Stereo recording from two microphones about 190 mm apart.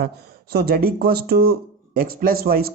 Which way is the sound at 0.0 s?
55° right (ahead or behind).